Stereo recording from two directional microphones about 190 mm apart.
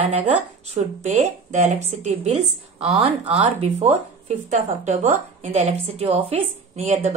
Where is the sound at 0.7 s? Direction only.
35° right (ahead or behind).